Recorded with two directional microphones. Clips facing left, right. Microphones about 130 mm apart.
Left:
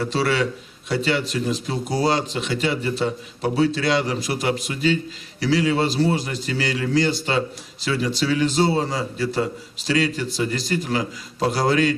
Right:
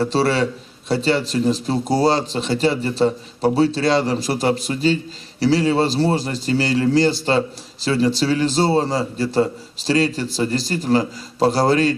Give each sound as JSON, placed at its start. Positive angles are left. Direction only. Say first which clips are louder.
{"t": 0.0, "sound": "speech", "louder": "right 3 dB", "side_deg": -30}